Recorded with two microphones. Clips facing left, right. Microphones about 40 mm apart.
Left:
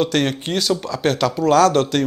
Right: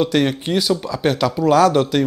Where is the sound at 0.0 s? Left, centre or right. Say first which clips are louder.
Right 2 dB; left.